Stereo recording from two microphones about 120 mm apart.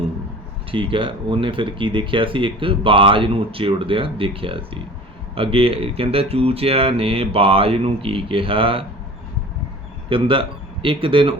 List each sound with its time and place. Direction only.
0.7 s speech: 45° right (ahead or behind)
10.1 s speech: 45° right (ahead or behind)